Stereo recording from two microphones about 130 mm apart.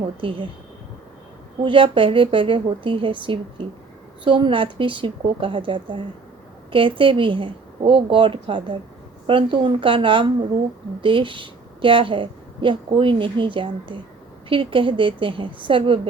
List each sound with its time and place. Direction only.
0.2 s a woman's voice: 40° right (ahead or behind)
1.6 s a woman's voice: 40° right (ahead or behind)